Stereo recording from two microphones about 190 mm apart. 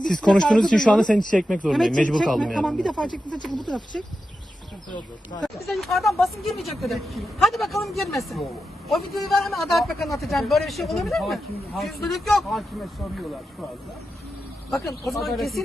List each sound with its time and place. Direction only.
0.0 s a man's voice: centre (ahead or behind)
5.3 s speech: 20° left (ahead or behind)
5.6 s a man's voice: centre (ahead or behind)
14.7 s a man's voice: centre (ahead or behind)